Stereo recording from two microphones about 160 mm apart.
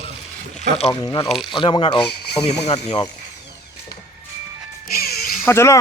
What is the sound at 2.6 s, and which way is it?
Speech, 40° left (ahead or behind).